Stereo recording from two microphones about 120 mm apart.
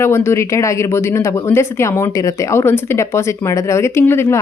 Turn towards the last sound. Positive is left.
turn(degrees=20)  # may be behind; listen again after turning